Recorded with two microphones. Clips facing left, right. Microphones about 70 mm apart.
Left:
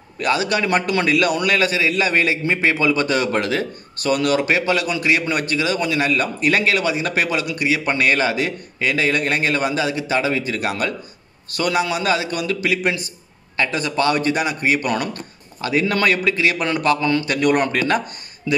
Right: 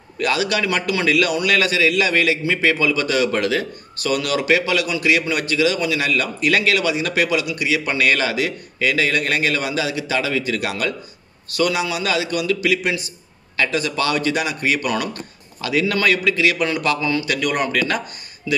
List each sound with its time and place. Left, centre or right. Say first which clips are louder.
0.2 s a man's voice: left 1 dB; left